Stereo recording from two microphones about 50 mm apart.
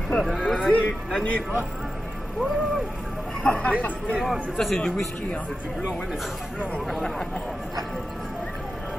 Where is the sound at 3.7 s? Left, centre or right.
Left.